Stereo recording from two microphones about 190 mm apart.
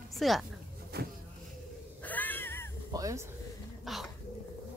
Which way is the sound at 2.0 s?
10° left (ahead or behind).